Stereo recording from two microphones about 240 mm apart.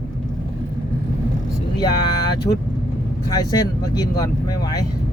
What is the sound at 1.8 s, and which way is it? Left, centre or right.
Speech, centre.